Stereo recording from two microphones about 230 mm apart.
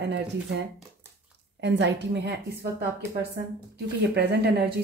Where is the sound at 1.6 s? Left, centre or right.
Right.